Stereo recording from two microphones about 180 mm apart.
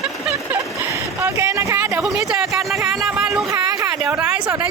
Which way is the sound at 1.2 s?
15° right (ahead or behind).